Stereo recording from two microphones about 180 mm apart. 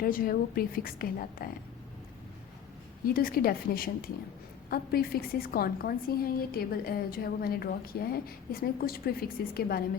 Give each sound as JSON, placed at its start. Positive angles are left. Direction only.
{"t": 0.0, "sound": "a woman's voice", "side_deg": 55}
{"t": 3.1, "sound": "a woman's voice", "side_deg": 55}